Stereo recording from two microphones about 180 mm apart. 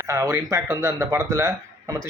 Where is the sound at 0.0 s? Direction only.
15° right (ahead or behind).